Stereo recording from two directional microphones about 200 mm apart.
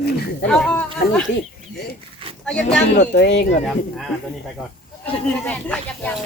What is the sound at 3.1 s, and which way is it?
Speech, 60° left (ahead or behind).